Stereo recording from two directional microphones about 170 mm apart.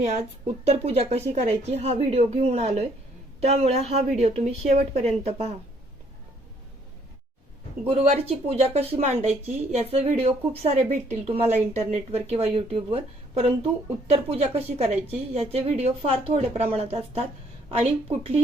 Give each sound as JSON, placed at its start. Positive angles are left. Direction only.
{"t": 0.0, "sound": "a woman's voice", "side_deg": -40}
{"t": 7.9, "sound": "a woman's voice", "side_deg": -35}
{"t": 14.1, "sound": "a woman's voice", "side_deg": -35}